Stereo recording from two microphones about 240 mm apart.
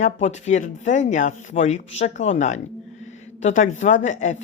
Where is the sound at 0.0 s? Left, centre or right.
Left.